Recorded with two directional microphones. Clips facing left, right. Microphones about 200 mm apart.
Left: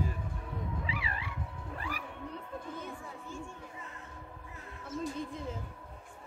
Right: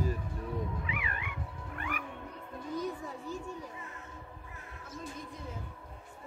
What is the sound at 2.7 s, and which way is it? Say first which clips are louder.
Children playing: right 6 dB; 40° right (ahead or behind).